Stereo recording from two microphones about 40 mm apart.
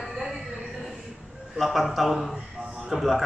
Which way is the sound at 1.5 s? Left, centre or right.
Centre.